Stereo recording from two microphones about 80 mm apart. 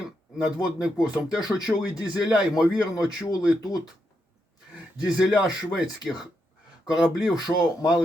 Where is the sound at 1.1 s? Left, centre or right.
Centre.